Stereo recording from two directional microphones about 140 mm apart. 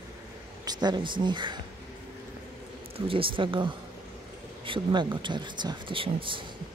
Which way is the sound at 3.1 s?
40° right (ahead or behind).